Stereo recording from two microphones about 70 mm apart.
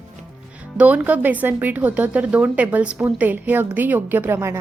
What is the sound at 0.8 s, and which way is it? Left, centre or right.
A woman's voice, right.